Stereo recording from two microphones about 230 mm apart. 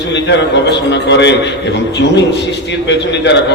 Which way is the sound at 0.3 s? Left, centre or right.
Left.